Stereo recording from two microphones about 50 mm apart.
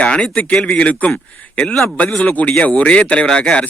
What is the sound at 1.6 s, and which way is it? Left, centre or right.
Speech, centre.